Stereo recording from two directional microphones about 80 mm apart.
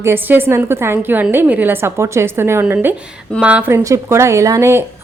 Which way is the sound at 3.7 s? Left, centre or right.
Right.